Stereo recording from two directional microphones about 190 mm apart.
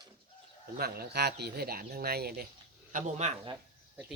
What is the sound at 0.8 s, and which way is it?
Speech, 55° right (ahead or behind).